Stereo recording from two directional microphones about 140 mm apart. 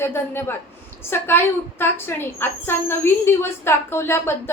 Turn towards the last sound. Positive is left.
turn(degrees=15)  # may be behind; listen again after turning